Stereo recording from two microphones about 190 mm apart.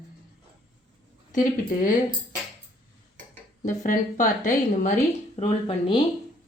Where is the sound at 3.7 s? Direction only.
45° left (ahead or behind).